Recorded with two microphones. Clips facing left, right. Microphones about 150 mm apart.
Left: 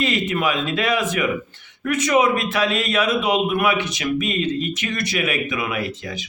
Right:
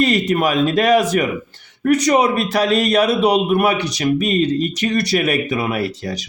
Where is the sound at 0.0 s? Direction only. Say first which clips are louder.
Right 5 dB; 40° right (ahead or behind).